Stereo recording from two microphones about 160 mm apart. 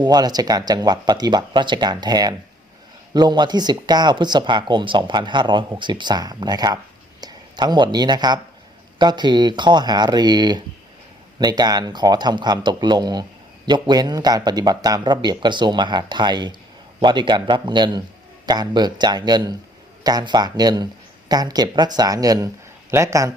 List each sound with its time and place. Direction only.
0.0 s speech: 25° right (ahead or behind)